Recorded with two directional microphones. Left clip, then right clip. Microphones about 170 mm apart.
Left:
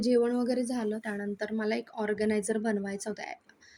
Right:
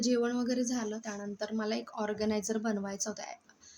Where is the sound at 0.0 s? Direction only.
10° left (ahead or behind); by 1.3 s 30° left (ahead or behind).